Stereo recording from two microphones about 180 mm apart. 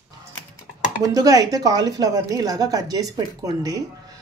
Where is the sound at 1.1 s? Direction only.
20° right (ahead or behind).